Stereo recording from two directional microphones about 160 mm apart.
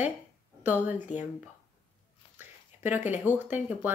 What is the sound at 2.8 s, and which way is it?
Speech, 10° right (ahead or behind).